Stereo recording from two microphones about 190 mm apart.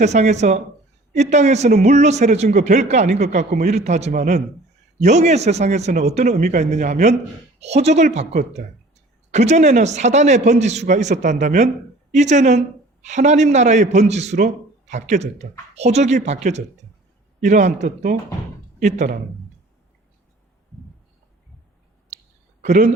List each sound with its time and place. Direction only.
0.0 s a man's voice: 35° right (ahead or behind)
22.6 s speech: 40° right (ahead or behind)